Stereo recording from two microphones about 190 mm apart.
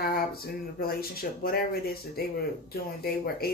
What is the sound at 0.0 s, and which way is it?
Speech, 50° left (ahead or behind).